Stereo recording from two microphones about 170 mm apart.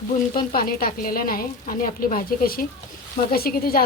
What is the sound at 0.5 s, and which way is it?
A woman's voice, 55° left (ahead or behind).